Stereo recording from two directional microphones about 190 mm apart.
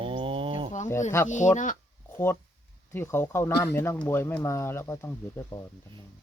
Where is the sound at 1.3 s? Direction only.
40° left (ahead or behind).